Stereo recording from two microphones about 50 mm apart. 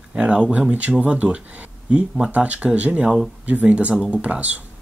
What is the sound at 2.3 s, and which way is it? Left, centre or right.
Speech, right.